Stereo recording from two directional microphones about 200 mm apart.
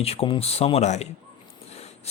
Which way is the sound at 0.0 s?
30° left (ahead or behind).